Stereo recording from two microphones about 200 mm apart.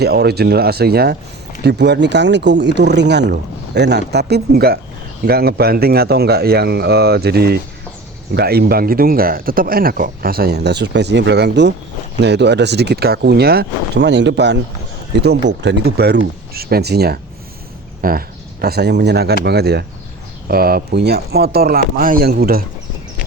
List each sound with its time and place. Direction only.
0.0 s speech: 55° right (ahead or behind)